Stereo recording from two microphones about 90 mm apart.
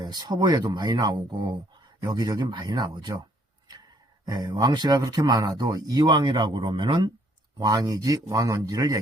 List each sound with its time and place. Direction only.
0.0 s speech: 50° right (ahead or behind)
4.3 s speech: 55° right (ahead or behind)
7.6 s speech: 45° right (ahead or behind)